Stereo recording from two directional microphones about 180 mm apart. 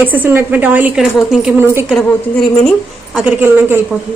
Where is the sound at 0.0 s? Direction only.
10° right (ahead or behind).